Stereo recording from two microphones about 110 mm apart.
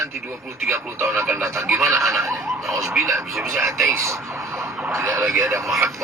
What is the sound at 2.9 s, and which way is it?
Speech, 25° right (ahead or behind).